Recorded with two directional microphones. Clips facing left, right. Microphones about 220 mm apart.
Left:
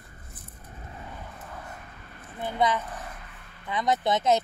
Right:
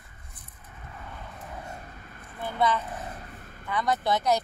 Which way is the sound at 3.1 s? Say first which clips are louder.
Right 4 dB; 40° right (ahead or behind).